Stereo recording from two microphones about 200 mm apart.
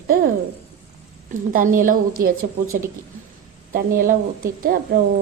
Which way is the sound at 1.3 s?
40° right (ahead or behind).